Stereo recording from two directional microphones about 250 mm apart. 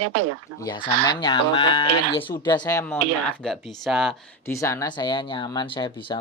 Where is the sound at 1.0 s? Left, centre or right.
Centre.